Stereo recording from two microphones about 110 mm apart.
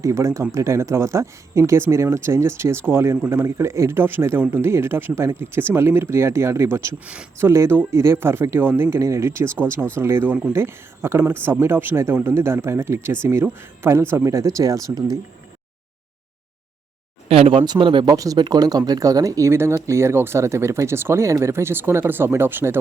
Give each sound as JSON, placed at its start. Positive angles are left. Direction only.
{"t": 0.0, "sound": "speech", "side_deg": -25}
{"t": 7.0, "sound": "speech", "side_deg": -10}
{"t": 7.3, "sound": "speech", "side_deg": -25}
{"t": 17.2, "sound": "speech", "side_deg": -65}
{"t": 17.7, "sound": "speech", "side_deg": -50}